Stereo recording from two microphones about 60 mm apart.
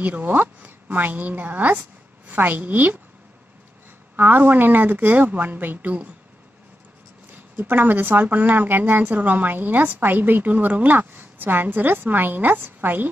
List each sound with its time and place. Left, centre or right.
0.0 s a woman's voice: right
4.2 s a woman's voice: right
7.5 s a woman's voice: right